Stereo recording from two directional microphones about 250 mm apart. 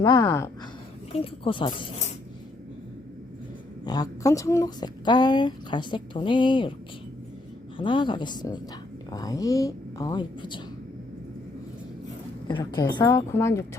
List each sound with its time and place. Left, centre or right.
0.0 s a woman's voice: centre
3.8 s speech: centre
7.8 s speech: centre
12.5 s speech: centre